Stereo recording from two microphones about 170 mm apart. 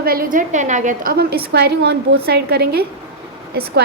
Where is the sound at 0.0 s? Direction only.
60° right (ahead or behind).